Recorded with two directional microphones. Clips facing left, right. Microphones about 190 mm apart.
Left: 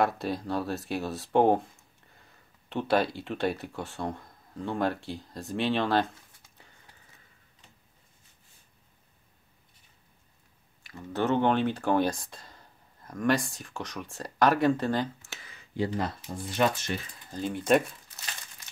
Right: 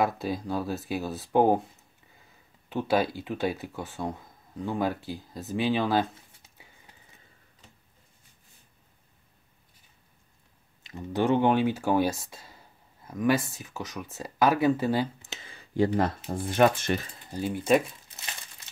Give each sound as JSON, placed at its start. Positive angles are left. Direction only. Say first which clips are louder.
{"t": 0.0, "sound": "speech", "louder": "even", "side_deg": 0}
{"t": 10.8, "sound": "speech", "louder": "right 3 dB", "side_deg": -20}
{"t": 15.2, "sound": "a sound", "louder": "right 3 dB", "side_deg": -25}
{"t": 15.7, "sound": "speech", "louder": "right 5 dB", "side_deg": -50}
{"t": 17.3, "sound": "speech", "louder": "right 1 dB", "side_deg": -5}